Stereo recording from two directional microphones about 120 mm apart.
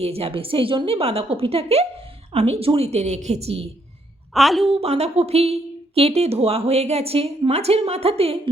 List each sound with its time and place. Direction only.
0.0 s a woman's voice: 55° right (ahead or behind)
4.4 s a woman's voice: centre (ahead or behind)
4.7 s speech: 60° right (ahead or behind)